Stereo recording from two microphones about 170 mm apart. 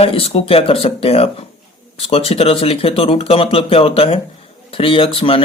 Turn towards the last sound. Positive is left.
turn(degrees=35)  # may be behind; listen again after turning